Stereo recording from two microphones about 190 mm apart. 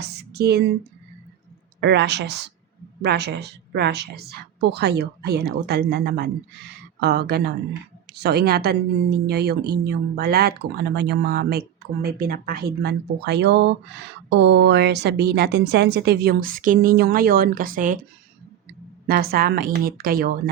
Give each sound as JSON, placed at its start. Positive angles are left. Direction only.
{"t": 0.0, "sound": "a sound", "side_deg": -60}
{"t": 1.8, "sound": "a woman's voice", "side_deg": -65}
{"t": 19.0, "sound": "a woman's voice", "side_deg": -50}